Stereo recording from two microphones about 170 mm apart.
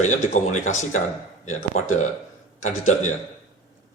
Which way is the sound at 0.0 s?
45° left (ahead or behind).